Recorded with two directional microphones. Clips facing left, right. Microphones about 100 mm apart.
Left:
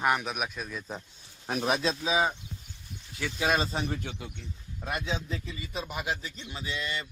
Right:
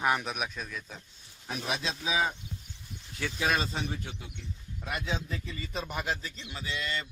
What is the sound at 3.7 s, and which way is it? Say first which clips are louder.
Speech: left 3 dB; 55° left (ahead or behind).